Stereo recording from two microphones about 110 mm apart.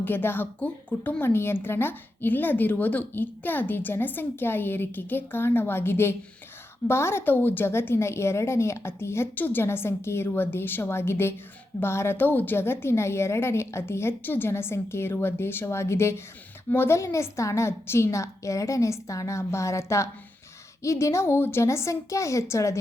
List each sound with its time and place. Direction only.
0.0 s a woman's voice: 20° left (ahead or behind)